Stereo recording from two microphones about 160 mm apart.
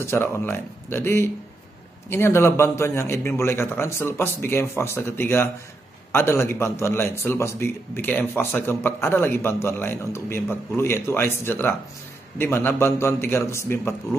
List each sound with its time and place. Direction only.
0.0 s a man's voice: 15° left (ahead or behind)